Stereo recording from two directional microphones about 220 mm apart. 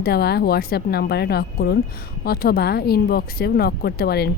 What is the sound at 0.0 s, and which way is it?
A woman's voice, 45° left (ahead or behind).